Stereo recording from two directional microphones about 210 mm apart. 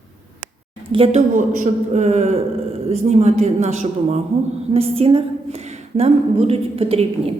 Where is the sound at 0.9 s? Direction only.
25° right (ahead or behind).